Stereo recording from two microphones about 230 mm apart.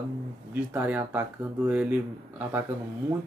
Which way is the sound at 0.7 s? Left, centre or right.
Centre.